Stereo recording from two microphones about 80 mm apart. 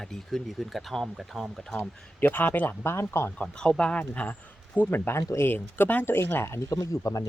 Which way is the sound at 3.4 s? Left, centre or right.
Centre.